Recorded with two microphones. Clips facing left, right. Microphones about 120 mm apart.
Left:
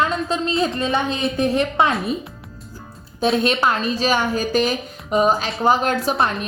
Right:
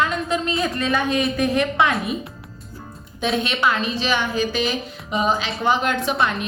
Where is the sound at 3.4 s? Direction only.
40° left (ahead or behind).